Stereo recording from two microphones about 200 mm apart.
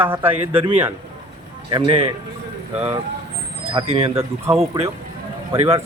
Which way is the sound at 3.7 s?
30° right (ahead or behind).